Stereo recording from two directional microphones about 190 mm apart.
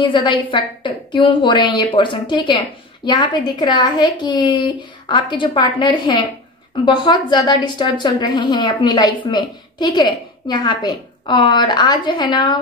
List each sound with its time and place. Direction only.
0.0 s a woman's voice: 25° left (ahead or behind)